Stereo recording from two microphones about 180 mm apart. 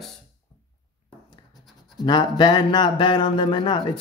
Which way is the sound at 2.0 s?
25° left (ahead or behind).